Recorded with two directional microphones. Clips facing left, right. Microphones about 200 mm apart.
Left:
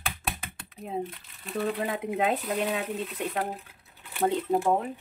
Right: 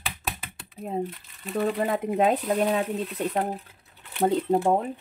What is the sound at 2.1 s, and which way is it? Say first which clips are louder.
Speech: right 4 dB; 40° right (ahead or behind).